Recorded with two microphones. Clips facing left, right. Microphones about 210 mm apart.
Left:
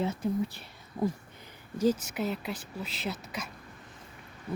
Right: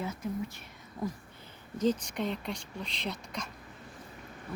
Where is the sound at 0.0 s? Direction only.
30° left (ahead or behind).